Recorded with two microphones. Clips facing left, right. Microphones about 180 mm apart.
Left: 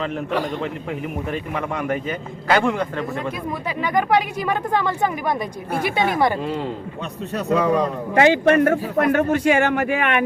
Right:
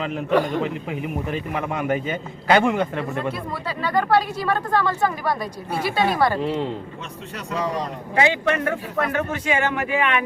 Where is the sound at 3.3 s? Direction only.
15° left (ahead or behind).